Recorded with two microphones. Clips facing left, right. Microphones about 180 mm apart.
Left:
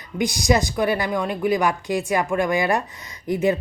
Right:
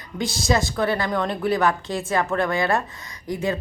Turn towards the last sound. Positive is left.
turn(degrees=20)  # may be behind; listen again after turning